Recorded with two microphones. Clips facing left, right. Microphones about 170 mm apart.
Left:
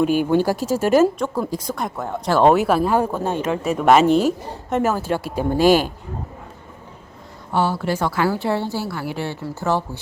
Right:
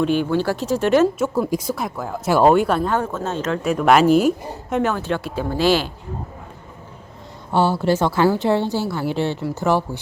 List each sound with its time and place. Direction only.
0.0 s speech: 10° left (ahead or behind)
1.2 s speech: 10° right (ahead or behind); by 3.6 s 15° left (ahead or behind)
3.6 s speech: centre (ahead or behind)
4.7 s speech: 5° left (ahead or behind)
5.5 s speech: 45° left (ahead or behind)
7.5 s a woman's voice: 30° right (ahead or behind)